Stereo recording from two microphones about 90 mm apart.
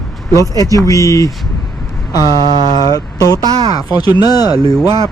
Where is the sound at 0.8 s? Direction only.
40° left (ahead or behind).